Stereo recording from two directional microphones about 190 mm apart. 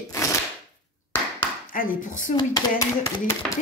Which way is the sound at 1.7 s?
45° left (ahead or behind).